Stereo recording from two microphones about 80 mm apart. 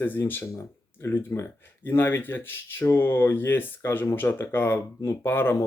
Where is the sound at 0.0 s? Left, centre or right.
Left.